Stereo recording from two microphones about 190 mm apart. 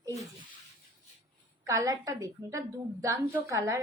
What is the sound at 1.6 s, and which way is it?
A woman's voice, 20° right (ahead or behind).